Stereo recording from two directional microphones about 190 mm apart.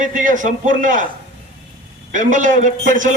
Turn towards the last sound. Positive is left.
turn(degrees=-45)  # may be behind; listen again after turning